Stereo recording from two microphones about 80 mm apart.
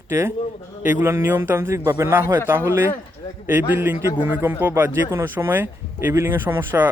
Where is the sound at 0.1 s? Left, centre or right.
Right.